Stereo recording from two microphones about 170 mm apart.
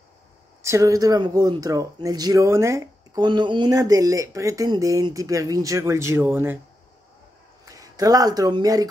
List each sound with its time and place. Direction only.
0.6 s speech: 15° right (ahead or behind)
7.6 s speech: 20° right (ahead or behind)